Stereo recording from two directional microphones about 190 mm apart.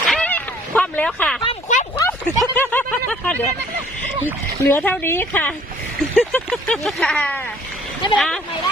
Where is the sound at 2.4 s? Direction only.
10° left (ahead or behind).